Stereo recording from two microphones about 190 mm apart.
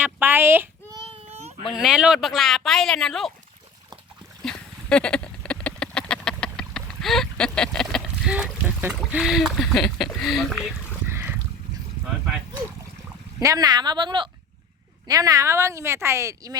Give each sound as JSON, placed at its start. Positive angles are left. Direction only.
{"t": 0.0, "sound": "speech", "side_deg": -10}
{"t": 1.1, "sound": "baby cry", "side_deg": -35}
{"t": 1.7, "sound": "speech", "side_deg": -5}
{"t": 4.4, "sound": "a sound", "side_deg": 5}
{"t": 11.1, "sound": "a sound", "side_deg": -15}
{"t": 13.4, "sound": "a woman's voice", "side_deg": -20}